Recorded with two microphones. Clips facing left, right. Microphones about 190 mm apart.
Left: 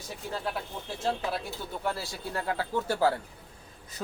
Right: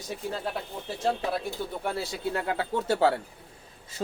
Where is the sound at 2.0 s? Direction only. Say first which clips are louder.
Right 5 dB; 25° right (ahead or behind).